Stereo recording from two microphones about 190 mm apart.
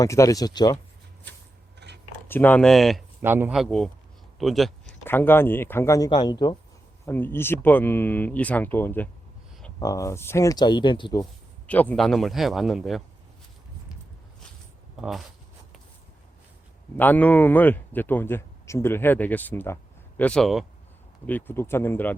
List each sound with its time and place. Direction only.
0.0 s a man's voice: 15° left (ahead or behind)
1.8 s a sound: 60° right (ahead or behind)
2.2 s speech: 10° left (ahead or behind)
3.2 s speech: 10° right (ahead or behind)
5.0 s a man's voice: 10° left (ahead or behind)
7.0 s a man's voice: 10° left (ahead or behind)
11.6 s speech: 10° left (ahead or behind)
14.9 s speech: 5° right (ahead or behind)
17.0 s a man's voice: 10° left (ahead or behind)